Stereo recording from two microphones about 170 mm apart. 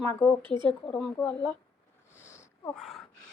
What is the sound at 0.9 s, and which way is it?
Speech, 5° left (ahead or behind).